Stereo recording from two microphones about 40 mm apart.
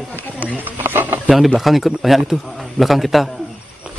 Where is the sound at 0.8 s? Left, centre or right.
Right.